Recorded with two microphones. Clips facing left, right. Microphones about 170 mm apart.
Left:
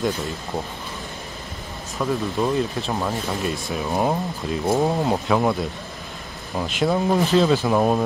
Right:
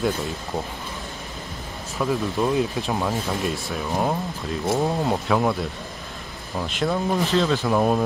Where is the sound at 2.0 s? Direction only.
Centre (ahead or behind).